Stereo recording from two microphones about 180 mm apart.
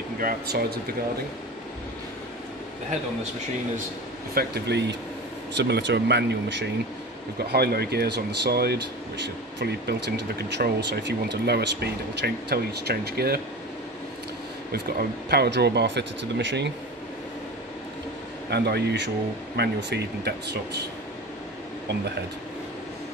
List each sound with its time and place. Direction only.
0.2 s speech: 55° right (ahead or behind)
4.3 s speech: 65° right (ahead or behind)
7.3 s speech: 60° right (ahead or behind)
14.7 s speech: 60° right (ahead or behind); by 16.7 s 75° right (ahead or behind)
18.5 s speech: 65° right (ahead or behind)